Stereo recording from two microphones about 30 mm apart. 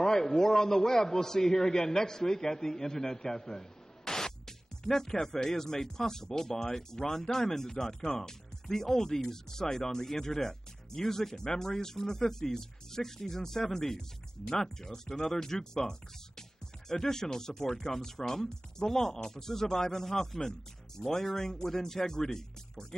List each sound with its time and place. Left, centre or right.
0.0 s a man's voice: centre